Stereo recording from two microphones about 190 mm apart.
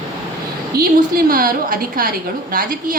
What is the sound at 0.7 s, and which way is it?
Speech, 50° right (ahead or behind).